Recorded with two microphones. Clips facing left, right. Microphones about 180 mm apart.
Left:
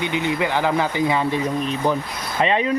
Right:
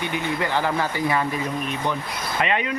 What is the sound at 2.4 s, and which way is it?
Speech, 30° left (ahead or behind).